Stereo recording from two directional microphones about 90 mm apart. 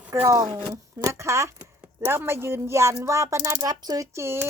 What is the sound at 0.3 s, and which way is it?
A woman's voice, 45° right (ahead or behind).